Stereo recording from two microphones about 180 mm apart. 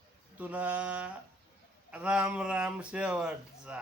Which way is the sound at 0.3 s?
10° right (ahead or behind).